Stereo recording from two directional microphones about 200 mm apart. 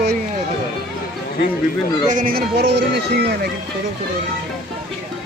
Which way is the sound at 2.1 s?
45° right (ahead or behind).